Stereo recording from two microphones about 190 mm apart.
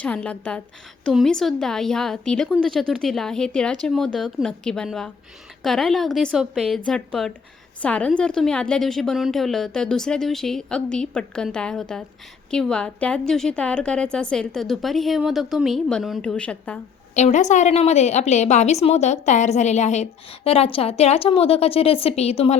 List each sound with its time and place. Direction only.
0.0 s a woman's voice: 5° left (ahead or behind)
17.2 s a woman's voice: 35° left (ahead or behind)